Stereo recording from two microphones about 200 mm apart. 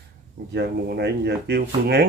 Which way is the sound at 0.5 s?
55° right (ahead or behind).